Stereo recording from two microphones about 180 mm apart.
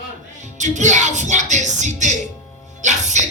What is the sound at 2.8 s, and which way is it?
Speech, 40° right (ahead or behind).